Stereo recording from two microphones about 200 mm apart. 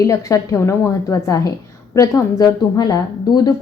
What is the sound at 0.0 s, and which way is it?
A woman's voice, 15° left (ahead or behind).